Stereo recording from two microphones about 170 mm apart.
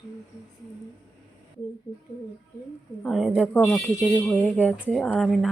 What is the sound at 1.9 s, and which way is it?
Speech, 20° left (ahead or behind).